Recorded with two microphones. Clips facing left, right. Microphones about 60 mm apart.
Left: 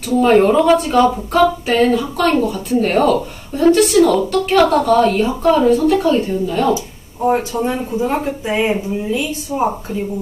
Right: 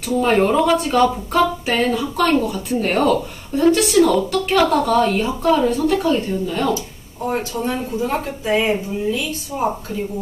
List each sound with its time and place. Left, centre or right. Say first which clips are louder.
0.0 s speech: left 5 dB; centre
6.7 s speech: left 4 dB; centre